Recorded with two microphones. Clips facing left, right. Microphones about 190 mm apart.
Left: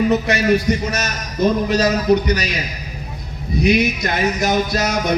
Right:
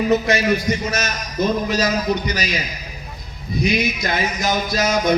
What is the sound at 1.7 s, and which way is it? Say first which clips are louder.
Speech: left 5 dB; 65° left (ahead or behind).